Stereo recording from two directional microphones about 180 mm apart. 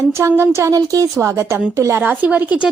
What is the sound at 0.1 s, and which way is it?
Speech, 15° right (ahead or behind).